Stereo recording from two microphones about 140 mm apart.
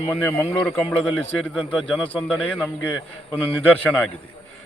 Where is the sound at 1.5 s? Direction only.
5° right (ahead or behind).